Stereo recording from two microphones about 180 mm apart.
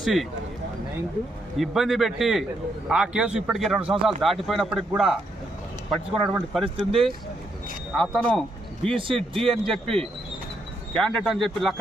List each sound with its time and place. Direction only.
0.0 s speech: centre (ahead or behind)
1.5 s a man's voice: centre (ahead or behind)
6.9 s speech: 30° right (ahead or behind)
7.9 s a man's voice: centre (ahead or behind)
10.9 s a man's voice: centre (ahead or behind)